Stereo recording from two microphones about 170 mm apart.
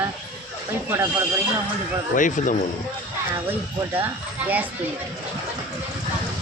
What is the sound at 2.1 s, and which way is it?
Speech, 50° left (ahead or behind).